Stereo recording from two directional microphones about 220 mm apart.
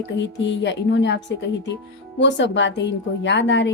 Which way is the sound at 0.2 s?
55° left (ahead or behind).